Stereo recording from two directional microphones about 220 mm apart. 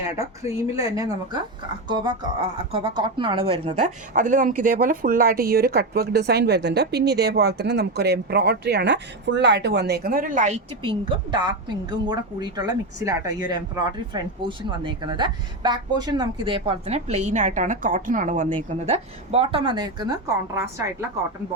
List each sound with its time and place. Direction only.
0.1 s speech: 10° right (ahead or behind)